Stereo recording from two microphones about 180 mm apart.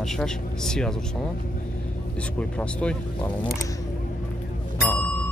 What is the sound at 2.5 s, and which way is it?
Speech, 5° left (ahead or behind).